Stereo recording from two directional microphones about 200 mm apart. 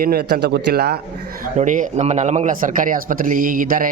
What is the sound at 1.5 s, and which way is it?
A man's voice, 40° right (ahead or behind).